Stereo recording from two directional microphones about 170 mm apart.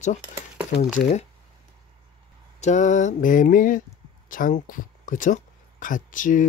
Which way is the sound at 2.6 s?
45° left (ahead or behind).